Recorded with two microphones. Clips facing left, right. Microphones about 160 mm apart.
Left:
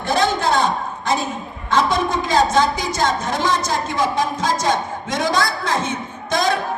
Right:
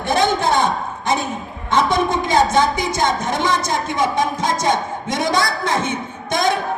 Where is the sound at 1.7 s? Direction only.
20° right (ahead or behind).